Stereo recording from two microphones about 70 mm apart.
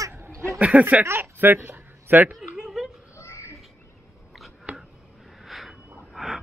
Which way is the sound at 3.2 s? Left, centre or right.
Left.